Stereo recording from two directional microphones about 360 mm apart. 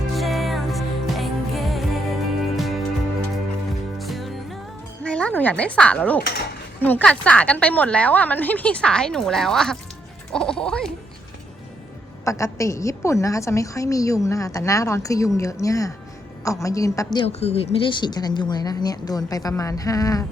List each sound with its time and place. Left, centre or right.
0.2 s music: centre
3.9 s music: centre
5.0 s speech: centre
6.2 s speech: left
6.8 s a woman's voice: centre
12.2 s a woman's voice: centre